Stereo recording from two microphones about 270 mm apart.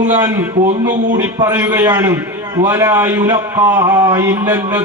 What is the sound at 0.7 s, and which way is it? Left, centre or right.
Music, right.